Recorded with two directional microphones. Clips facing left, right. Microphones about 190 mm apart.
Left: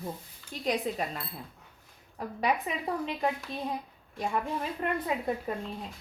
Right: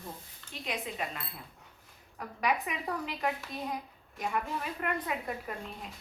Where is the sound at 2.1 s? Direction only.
25° left (ahead or behind).